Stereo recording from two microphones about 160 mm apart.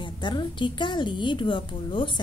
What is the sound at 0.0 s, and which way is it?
A woman's voice, 30° left (ahead or behind).